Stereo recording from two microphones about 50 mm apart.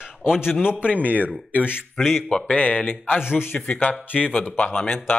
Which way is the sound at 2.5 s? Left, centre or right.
Left.